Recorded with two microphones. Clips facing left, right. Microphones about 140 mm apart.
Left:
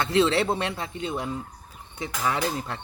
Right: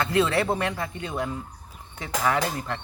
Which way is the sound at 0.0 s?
25° left (ahead or behind).